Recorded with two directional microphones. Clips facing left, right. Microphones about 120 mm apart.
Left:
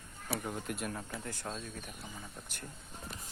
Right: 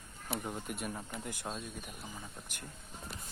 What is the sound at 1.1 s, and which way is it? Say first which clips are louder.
Speech: even; 15° right (ahead or behind).